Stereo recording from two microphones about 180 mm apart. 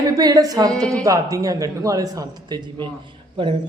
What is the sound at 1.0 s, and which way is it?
Speech, 20° right (ahead or behind).